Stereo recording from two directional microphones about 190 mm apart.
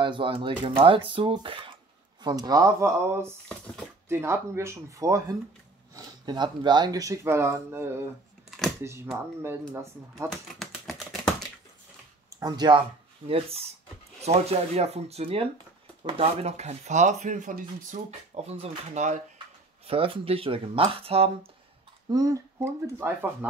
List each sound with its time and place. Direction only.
0.0 s speech: 25° right (ahead or behind)
3.4 s speech: 5° left (ahead or behind)
4.1 s speech: 15° right (ahead or behind)
10.5 s typing: centre (ahead or behind)
12.4 s speech: 20° right (ahead or behind)
22.1 s speech: 15° right (ahead or behind)